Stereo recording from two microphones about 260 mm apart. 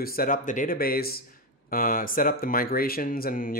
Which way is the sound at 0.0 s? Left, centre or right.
Left.